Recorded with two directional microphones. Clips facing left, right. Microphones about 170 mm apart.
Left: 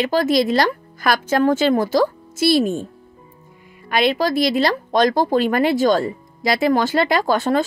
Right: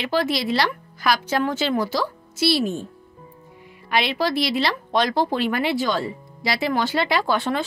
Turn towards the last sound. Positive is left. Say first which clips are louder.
# left 4 dB
turn(degrees=40)  # may be behind; listen again after turning